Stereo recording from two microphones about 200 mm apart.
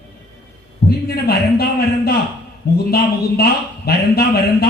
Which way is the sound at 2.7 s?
50° left (ahead or behind).